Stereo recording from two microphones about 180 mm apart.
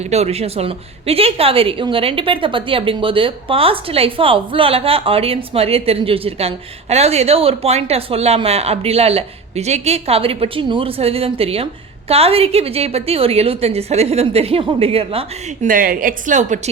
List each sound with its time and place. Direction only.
0.1 s speech: 35° right (ahead or behind)
15.6 s a woman's voice: 50° right (ahead or behind)